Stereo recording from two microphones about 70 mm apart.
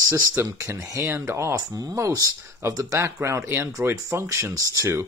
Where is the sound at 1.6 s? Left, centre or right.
Right.